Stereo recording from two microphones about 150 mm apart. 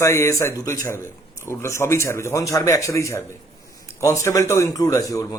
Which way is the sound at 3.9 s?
20° left (ahead or behind).